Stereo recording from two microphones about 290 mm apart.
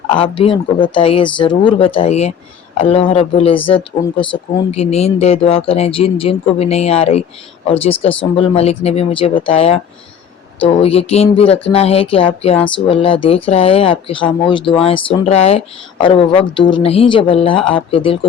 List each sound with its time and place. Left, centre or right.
0.1 s speech: centre